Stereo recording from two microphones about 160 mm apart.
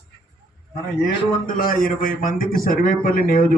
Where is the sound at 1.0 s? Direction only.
60° left (ahead or behind).